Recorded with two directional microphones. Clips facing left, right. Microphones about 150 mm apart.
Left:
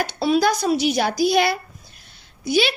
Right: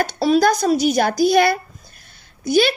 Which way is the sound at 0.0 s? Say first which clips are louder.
Right 3 dB; 40° right (ahead or behind).